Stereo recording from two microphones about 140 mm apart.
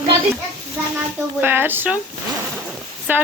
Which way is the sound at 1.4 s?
15° right (ahead or behind).